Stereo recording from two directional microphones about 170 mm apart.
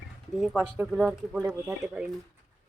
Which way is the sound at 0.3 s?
Centre (ahead or behind).